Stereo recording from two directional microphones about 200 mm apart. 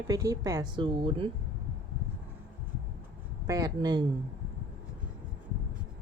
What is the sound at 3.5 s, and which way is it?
Speech, 20° right (ahead or behind).